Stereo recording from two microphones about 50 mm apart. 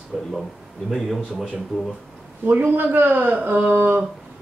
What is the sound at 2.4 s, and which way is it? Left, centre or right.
Speech, right.